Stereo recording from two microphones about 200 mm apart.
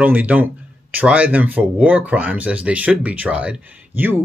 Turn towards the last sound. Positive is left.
turn(degrees=-10)  # may be behind; listen again after turning